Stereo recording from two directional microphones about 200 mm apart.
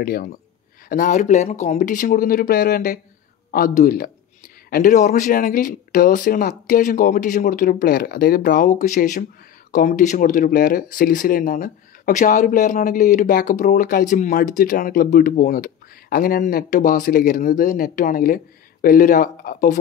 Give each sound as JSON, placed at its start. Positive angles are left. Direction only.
{"t": 0.0, "sound": "speech", "side_deg": 45}